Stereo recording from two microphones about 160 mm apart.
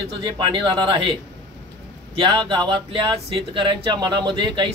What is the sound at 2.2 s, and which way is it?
Speech, 30° right (ahead or behind).